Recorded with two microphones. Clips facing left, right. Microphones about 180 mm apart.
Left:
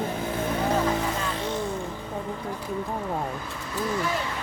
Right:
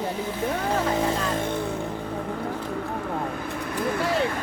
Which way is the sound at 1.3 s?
55° right (ahead or behind).